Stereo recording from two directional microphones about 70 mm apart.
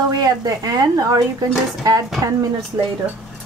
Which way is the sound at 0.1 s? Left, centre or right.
Right.